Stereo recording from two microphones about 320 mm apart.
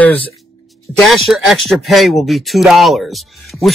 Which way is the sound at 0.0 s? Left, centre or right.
Centre.